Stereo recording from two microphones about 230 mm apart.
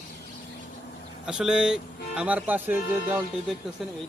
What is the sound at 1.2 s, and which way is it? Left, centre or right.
Speech, centre.